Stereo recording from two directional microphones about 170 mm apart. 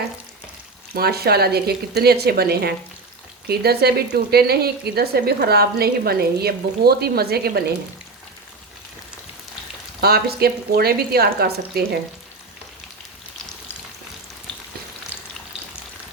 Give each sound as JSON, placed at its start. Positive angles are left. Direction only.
{"t": 0.9, "sound": "a woman's voice", "side_deg": -65}
{"t": 10.0, "sound": "a woman's voice", "side_deg": -65}